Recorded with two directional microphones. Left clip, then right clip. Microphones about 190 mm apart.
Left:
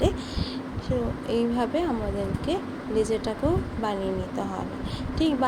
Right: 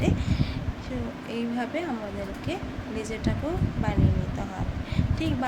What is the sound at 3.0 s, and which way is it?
Speech, 20° left (ahead or behind).